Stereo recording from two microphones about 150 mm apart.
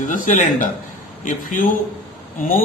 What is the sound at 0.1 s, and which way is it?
A man's voice, 60° left (ahead or behind).